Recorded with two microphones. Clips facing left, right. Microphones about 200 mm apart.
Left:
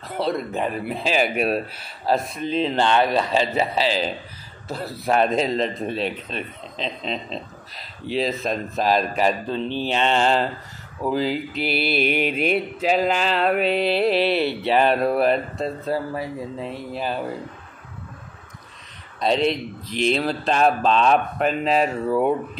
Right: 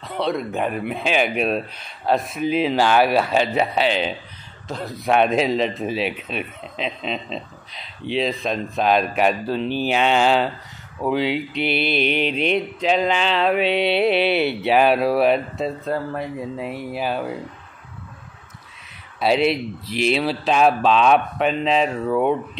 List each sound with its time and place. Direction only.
0.0 s speech: centre (ahead or behind)
9.5 s speech: 25° left (ahead or behind)
9.8 s speech: 5° right (ahead or behind)
19.1 s speech: 5° right (ahead or behind)